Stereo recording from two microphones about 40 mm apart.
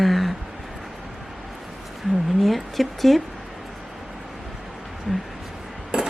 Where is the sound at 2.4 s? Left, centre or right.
Centre.